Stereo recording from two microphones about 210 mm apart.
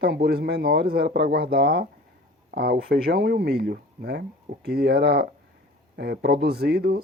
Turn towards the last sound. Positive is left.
turn(degrees=-50)  # may be behind; listen again after turning